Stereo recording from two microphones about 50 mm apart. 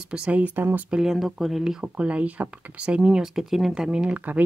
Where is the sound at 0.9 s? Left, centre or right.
Centre.